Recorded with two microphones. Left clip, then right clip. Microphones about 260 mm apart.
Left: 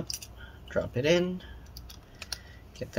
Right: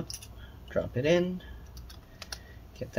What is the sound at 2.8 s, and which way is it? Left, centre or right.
Speech, centre.